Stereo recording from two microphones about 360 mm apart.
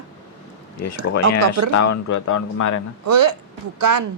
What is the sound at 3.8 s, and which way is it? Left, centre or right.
Speech, right.